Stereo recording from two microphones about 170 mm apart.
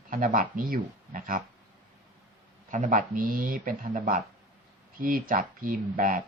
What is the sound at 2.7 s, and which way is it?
Speech, 55° right (ahead or behind).